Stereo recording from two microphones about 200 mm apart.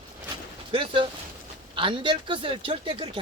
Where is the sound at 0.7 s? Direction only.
25° right (ahead or behind).